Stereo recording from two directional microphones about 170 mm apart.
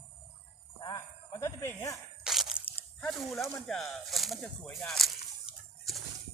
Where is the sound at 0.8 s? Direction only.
20° left (ahead or behind).